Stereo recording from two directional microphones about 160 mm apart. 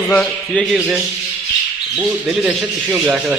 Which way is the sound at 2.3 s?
5° right (ahead or behind).